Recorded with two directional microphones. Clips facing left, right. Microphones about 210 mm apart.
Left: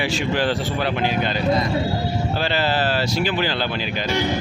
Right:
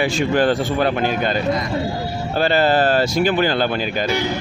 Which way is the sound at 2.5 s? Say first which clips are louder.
Right 7 dB; 50° right (ahead or behind).